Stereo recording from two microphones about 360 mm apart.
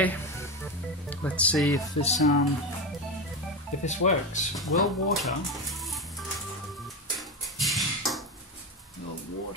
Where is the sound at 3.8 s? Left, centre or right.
Centre.